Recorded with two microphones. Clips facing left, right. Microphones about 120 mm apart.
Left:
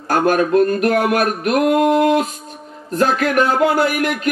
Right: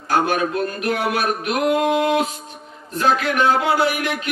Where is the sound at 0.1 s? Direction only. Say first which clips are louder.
Left 5 dB; 45° left (ahead or behind).